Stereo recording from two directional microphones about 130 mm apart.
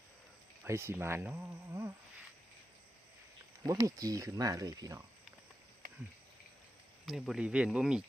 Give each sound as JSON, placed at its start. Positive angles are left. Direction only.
{"t": 0.6, "sound": "speech", "side_deg": -20}
{"t": 3.7, "sound": "speech", "side_deg": -25}
{"t": 7.0, "sound": "speech", "side_deg": 0}